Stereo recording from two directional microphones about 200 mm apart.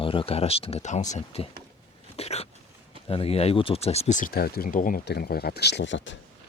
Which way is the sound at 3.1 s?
30° left (ahead or behind).